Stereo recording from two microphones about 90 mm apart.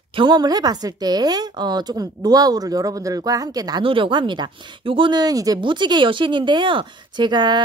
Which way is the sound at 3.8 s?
70° right (ahead or behind).